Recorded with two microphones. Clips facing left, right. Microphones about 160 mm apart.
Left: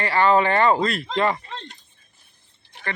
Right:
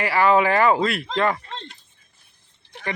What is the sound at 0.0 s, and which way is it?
Speech, 5° right (ahead or behind).